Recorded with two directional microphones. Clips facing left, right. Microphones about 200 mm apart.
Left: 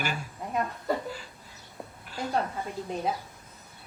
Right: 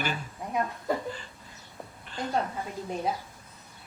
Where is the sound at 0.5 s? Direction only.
5° left (ahead or behind).